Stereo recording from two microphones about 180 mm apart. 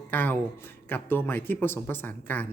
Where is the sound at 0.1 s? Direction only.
10° left (ahead or behind).